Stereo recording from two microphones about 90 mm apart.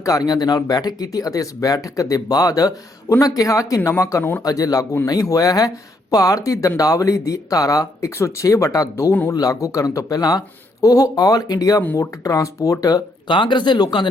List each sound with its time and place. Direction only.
0.0 s speech: 40° left (ahead or behind)
4.2 s speech: 20° left (ahead or behind)
4.4 s speech: 40° left (ahead or behind)
13.2 s speech: 60° left (ahead or behind)